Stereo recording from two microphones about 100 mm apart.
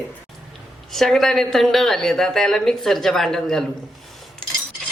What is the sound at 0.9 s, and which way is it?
A woman's voice, centre (ahead or behind).